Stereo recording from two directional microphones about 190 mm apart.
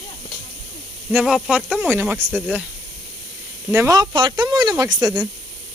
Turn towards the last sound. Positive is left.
turn(degrees=-20)  # may be behind; listen again after turning